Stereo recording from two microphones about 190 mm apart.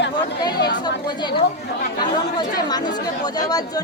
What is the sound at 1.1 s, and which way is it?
Speech, 25° left (ahead or behind).